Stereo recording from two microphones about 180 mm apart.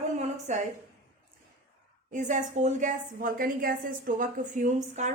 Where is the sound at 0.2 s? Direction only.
40° right (ahead or behind).